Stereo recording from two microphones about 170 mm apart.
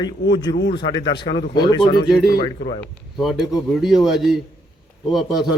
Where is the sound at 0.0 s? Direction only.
25° left (ahead or behind).